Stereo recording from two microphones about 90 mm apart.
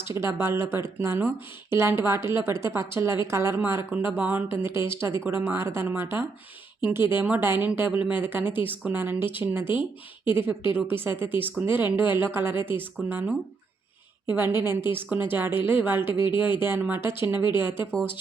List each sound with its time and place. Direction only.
0.1 s speech: 30° right (ahead or behind)
14.3 s speech: 25° right (ahead or behind)